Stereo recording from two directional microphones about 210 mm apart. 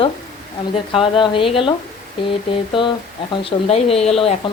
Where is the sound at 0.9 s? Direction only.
25° left (ahead or behind).